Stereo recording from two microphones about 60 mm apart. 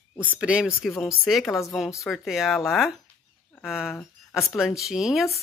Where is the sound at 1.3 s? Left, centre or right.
Centre.